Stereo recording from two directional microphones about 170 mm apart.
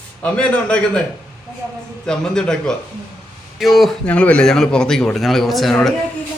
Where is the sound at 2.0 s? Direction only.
5° left (ahead or behind).